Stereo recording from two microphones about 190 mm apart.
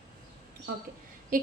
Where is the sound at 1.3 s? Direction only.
45° right (ahead or behind).